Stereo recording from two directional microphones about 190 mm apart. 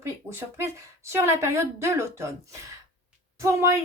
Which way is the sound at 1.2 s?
15° right (ahead or behind).